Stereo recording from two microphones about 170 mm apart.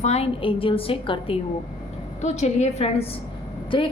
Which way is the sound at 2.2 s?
40° left (ahead or behind).